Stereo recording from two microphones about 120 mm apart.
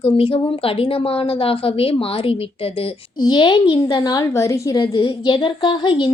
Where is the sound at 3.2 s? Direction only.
35° left (ahead or behind).